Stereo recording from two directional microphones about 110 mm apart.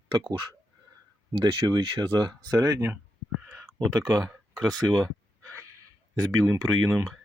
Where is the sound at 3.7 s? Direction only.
5° left (ahead or behind).